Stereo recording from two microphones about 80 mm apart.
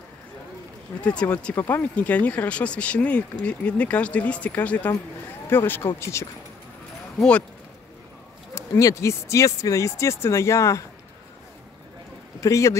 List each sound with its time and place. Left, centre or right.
1.0 s speech: centre
1.5 s speech: left
7.2 s speech: centre
8.5 s speech: left
12.4 s speech: left